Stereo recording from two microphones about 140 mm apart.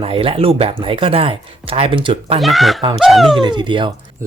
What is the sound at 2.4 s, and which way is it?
Speech, centre (ahead or behind).